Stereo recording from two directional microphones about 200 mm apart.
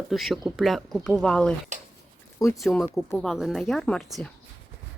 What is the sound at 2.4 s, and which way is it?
Speech, 15° left (ahead or behind).